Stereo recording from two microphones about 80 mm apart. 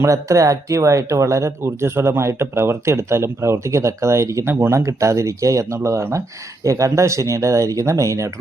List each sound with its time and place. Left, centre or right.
0.0 s speech: right